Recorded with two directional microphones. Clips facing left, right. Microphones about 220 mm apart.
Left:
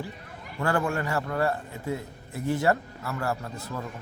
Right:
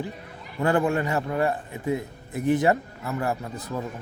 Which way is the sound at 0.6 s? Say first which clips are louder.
Right 4 dB; 20° right (ahead or behind).